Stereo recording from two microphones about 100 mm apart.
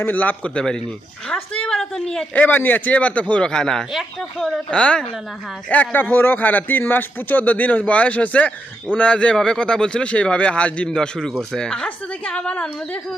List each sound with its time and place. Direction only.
0.0 s speech: 15° left (ahead or behind)